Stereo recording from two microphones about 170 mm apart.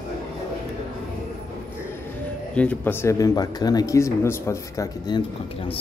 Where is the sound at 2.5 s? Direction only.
5° left (ahead or behind).